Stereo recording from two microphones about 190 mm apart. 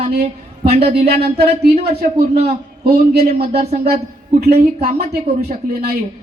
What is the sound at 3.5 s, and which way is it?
Speech, 35° right (ahead or behind).